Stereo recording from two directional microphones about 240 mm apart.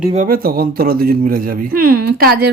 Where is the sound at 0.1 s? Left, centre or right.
Right.